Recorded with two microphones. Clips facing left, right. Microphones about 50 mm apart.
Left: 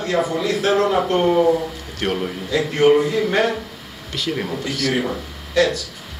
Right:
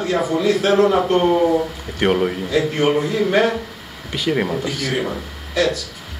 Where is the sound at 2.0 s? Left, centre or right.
Right.